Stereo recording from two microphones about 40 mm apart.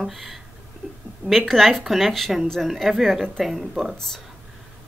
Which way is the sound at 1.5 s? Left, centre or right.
Centre.